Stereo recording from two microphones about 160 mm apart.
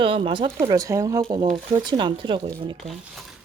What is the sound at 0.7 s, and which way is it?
Speech, 20° right (ahead or behind).